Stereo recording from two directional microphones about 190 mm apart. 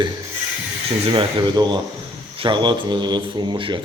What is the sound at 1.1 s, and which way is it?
Speech, 25° right (ahead or behind).